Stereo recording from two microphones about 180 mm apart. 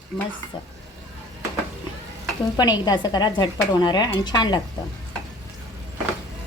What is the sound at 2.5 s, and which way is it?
A woman's voice, 20° left (ahead or behind).